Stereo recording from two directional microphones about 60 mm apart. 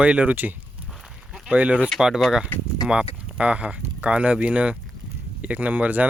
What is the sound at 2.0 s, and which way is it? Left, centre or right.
Speech, centre.